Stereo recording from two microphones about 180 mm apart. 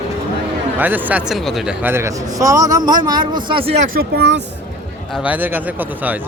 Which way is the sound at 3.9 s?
60° right (ahead or behind).